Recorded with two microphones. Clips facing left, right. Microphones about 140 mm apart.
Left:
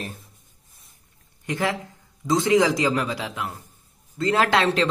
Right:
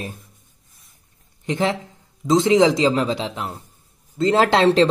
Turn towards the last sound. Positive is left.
turn(degrees=-30)  # may be behind; listen again after turning